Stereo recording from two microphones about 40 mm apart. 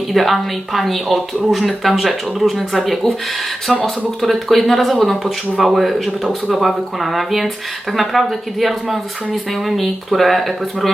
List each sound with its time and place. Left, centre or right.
0.1 s speech: centre